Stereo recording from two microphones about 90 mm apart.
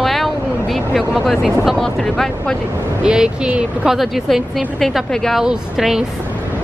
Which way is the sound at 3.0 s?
10° right (ahead or behind).